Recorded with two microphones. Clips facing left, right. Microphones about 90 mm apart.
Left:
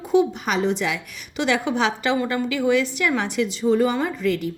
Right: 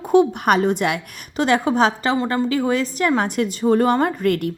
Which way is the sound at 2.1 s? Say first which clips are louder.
Right 3 dB; 30° right (ahead or behind).